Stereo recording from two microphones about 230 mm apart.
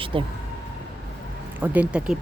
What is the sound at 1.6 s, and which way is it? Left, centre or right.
Speech, centre.